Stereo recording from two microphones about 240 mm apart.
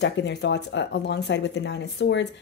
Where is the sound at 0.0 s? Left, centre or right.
Left.